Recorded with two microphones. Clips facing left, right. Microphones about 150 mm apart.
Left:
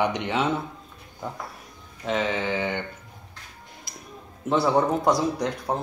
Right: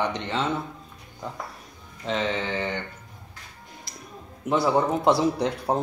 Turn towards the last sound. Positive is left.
turn(degrees=-30)  # may be behind; listen again after turning